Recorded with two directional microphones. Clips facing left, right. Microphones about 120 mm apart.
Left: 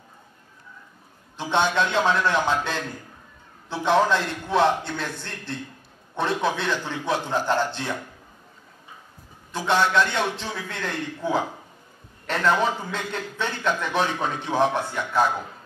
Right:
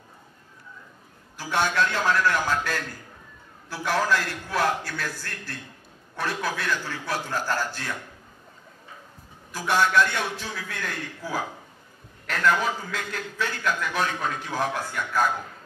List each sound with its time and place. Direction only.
1.3 s a man's voice: 25° left (ahead or behind)
9.5 s a man's voice: 20° left (ahead or behind)